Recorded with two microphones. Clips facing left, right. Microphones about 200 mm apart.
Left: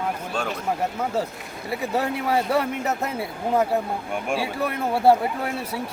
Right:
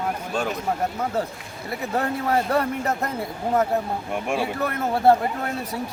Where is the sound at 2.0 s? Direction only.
5° left (ahead or behind).